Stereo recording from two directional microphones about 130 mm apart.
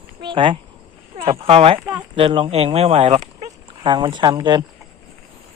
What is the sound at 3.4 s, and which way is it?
Speech, 35° right (ahead or behind).